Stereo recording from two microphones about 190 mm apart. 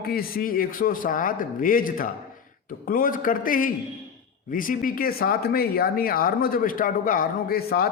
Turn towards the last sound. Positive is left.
turn(degrees=50)  # may be behind; listen again after turning